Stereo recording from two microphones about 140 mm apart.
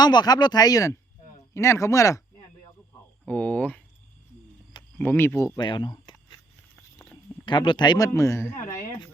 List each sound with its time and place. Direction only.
0.0 s speech: 30° left (ahead or behind)
3.2 s speech: 10° left (ahead or behind)
4.9 s speech: 15° left (ahead or behind)
5.5 s a sound: 35° left (ahead or behind)
7.0 s a sound: 20° left (ahead or behind)
7.4 s speech: 35° left (ahead or behind); by 8.5 s 20° left (ahead or behind)